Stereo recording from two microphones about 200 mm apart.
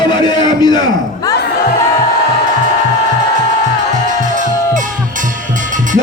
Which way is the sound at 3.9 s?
40° right (ahead or behind).